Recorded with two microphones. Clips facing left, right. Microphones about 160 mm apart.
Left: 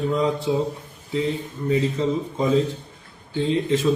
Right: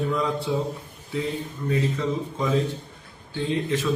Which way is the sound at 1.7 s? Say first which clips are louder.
Left 4 dB; 25° left (ahead or behind).